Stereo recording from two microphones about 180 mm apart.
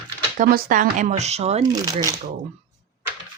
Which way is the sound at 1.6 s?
20° right (ahead or behind).